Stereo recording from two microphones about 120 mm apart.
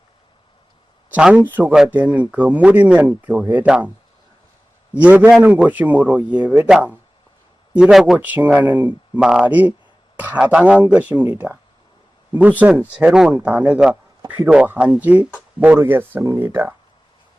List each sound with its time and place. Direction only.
1.1 s speech: 15° right (ahead or behind)
5.0 s speech: 15° right (ahead or behind)
8.2 s speech: 15° right (ahead or behind)